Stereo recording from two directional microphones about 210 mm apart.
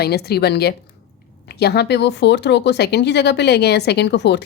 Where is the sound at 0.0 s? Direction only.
50° left (ahead or behind).